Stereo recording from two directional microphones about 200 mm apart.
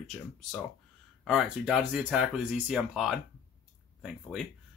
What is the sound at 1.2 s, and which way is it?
Speech, centre (ahead or behind).